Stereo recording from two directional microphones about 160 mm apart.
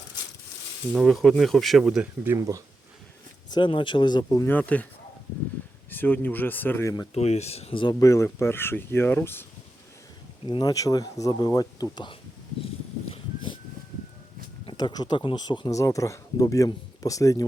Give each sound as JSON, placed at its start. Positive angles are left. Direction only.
{"t": 0.9, "sound": "speech", "side_deg": 0}
{"t": 2.2, "sound": "speech", "side_deg": -20}
{"t": 3.5, "sound": "speech", "side_deg": 30}
{"t": 5.9, "sound": "speech", "side_deg": 10}
{"t": 7.1, "sound": "speech", "side_deg": 40}
{"t": 7.9, "sound": "speech", "side_deg": 20}
{"t": 10.4, "sound": "speech", "side_deg": 25}
{"t": 13.1, "sound": "a sound", "side_deg": 30}
{"t": 14.7, "sound": "speech", "side_deg": 25}